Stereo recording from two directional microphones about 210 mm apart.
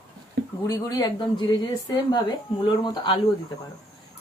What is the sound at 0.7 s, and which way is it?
Speech, 15° left (ahead or behind).